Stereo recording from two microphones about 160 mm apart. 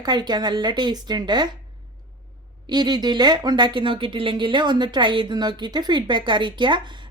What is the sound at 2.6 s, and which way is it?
Speech, 25° right (ahead or behind).